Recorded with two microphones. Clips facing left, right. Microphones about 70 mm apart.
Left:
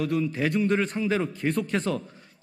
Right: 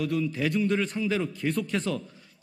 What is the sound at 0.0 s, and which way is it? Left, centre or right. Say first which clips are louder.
A man's voice: left 2 dB; left.